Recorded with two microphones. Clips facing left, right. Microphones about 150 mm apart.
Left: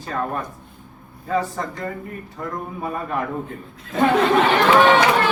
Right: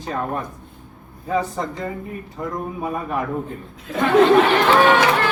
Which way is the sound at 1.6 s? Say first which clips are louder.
Right 1 dB; 20° right (ahead or behind).